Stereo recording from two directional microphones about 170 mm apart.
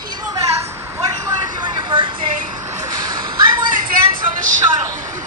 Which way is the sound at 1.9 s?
30° right (ahead or behind).